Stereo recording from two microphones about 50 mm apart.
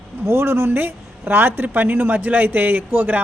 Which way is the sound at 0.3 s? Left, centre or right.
Right.